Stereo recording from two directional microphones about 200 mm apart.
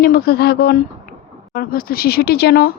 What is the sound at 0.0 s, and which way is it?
Speech, 50° left (ahead or behind).